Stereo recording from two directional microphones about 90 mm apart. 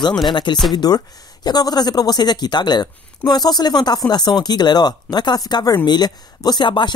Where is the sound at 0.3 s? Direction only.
60° left (ahead or behind).